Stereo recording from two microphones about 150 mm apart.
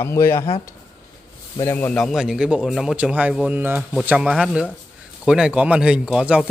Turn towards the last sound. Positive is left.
turn(degrees=-5)  # may be behind; listen again after turning